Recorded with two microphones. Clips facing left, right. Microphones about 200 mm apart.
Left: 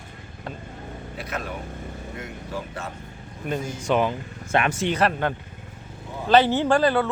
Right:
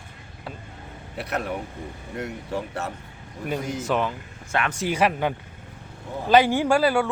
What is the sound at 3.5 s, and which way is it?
A man's voice, 5° right (ahead or behind).